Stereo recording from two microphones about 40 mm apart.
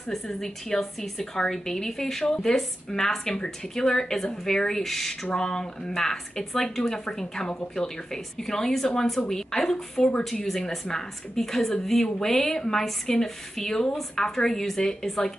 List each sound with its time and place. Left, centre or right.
0.1 s speech: centre
2.5 s speech: centre